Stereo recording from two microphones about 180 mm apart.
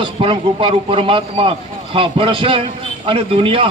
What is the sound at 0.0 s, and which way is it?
A man's voice, 30° right (ahead or behind).